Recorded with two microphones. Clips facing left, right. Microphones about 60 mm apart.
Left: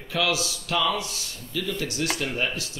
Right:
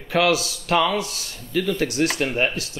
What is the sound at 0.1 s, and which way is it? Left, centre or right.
Speech, right.